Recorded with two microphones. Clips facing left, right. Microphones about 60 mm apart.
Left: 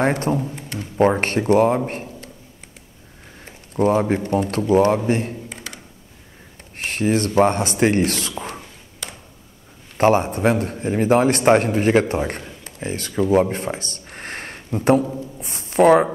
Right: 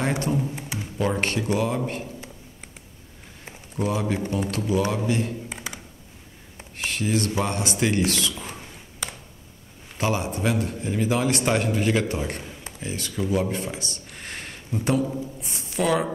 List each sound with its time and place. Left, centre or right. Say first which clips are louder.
0.0 s a man's voice: left 6 dB; left
0.6 s music: left 2 dB; centre
0.9 s a man's voice: left 8 dB; left
3.7 s speech: left 8 dB; left
5.5 s computer keyboard: even; centre
6.8 s a man's voice: left 5 dB; left
9.9 s a man's voice: left 9 dB; left